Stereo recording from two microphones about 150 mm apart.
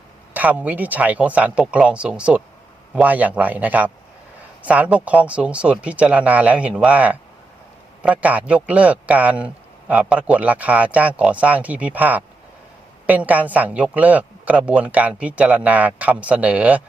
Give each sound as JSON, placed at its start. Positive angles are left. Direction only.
{"t": 0.3, "sound": "speech", "side_deg": -10}